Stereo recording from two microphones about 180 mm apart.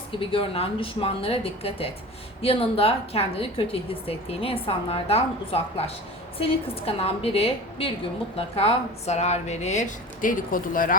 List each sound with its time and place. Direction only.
0.2 s a woman's voice: 30° left (ahead or behind); by 10.9 s 50° left (ahead or behind)